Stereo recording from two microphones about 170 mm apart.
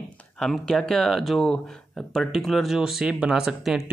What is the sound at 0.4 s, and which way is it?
Speech, centre (ahead or behind).